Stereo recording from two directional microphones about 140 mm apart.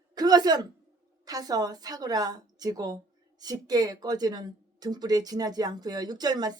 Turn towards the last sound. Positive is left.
turn(degrees=-30)  # may be behind; listen again after turning